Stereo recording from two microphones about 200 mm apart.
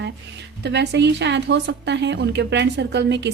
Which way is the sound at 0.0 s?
60° right (ahead or behind).